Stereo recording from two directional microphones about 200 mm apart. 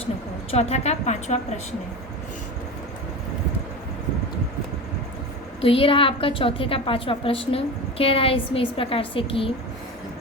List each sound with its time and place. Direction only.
0.5 s a woman's voice: 30° left (ahead or behind)
5.5 s a woman's voice: 25° left (ahead or behind)